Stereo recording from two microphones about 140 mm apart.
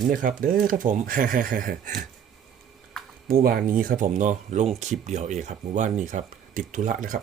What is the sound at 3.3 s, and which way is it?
Speech, 90° right.